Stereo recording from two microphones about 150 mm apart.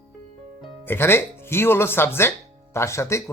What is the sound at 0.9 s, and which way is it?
Speech, 15° left (ahead or behind).